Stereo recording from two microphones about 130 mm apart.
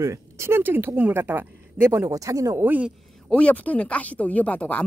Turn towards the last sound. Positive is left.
turn(degrees=10)  # may be behind; listen again after turning